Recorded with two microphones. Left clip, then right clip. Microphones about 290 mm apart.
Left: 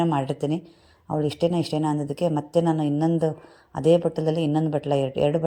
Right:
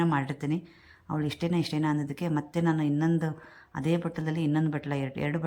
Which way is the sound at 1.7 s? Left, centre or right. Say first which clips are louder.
Left 5 dB; centre.